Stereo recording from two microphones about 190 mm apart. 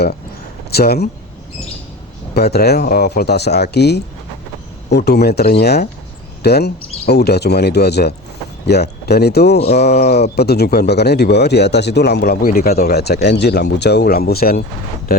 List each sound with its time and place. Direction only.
0.7 s speech: 55° left (ahead or behind)
2.3 s speech: 55° left (ahead or behind)